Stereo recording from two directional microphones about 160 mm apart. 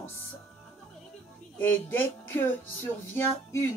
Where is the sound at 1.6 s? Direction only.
15° left (ahead or behind).